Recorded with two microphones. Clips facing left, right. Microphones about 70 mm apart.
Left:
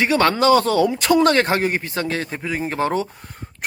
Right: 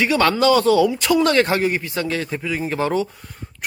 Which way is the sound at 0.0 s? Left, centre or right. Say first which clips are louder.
Even; left.